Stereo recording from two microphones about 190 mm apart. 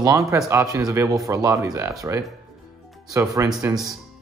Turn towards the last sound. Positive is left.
turn(degrees=-15)  # may be behind; listen again after turning